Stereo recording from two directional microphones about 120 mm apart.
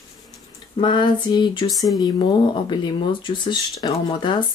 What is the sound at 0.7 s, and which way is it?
Speech, 40° left (ahead or behind).